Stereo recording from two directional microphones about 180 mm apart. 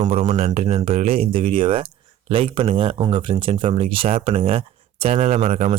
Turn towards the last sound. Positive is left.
turn(degrees=-35)  # may be behind; listen again after turning